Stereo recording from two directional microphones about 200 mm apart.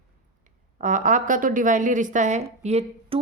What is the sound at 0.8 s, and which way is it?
A woman's voice, 40° right (ahead or behind).